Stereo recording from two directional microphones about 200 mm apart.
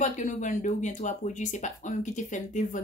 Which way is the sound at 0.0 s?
40° left (ahead or behind).